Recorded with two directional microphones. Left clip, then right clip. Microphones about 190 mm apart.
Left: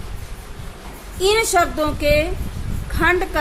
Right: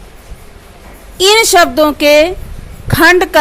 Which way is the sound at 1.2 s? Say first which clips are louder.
Right 9 dB; 45° right (ahead or behind).